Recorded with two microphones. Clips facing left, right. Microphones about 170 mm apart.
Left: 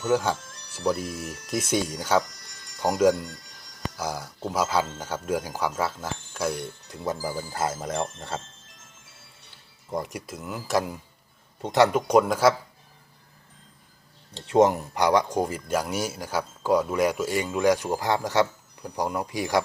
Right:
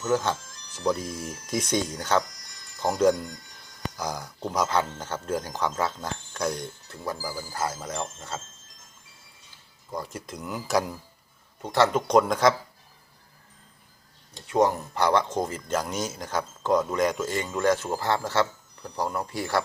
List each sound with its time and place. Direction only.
0.0 s speech: 10° left (ahead or behind)
0.3 s music: 60° left (ahead or behind)
0.9 s speech: 5° left (ahead or behind)
2.2 s music: 65° left (ahead or behind)
2.8 s speech: 10° left (ahead or behind)
3.2 s speech: 70° left (ahead or behind)
3.9 s speech: 5° left (ahead or behind); by 8.0 s 25° left (ahead or behind)
9.9 s speech: 15° left (ahead or behind); by 10.9 s centre (ahead or behind)
11.6 s speech: 15° left (ahead or behind)
14.3 s speech: 25° left (ahead or behind)